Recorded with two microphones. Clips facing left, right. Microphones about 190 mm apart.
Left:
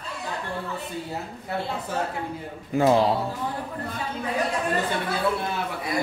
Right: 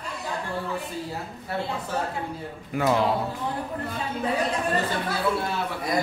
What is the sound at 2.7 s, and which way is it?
Speech, 25° left (ahead or behind).